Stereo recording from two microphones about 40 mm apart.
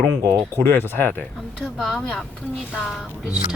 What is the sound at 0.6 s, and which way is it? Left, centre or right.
Speech, left.